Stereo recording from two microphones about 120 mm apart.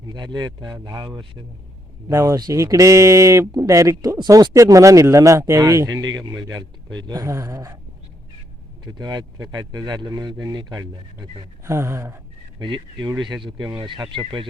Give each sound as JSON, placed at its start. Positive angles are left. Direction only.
{"t": 0.1, "sound": "speech", "side_deg": -35}
{"t": 8.9, "sound": "speech", "side_deg": -35}
{"t": 12.5, "sound": "speech", "side_deg": -40}